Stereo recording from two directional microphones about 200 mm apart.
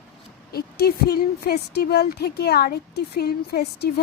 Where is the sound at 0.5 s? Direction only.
50° left (ahead or behind).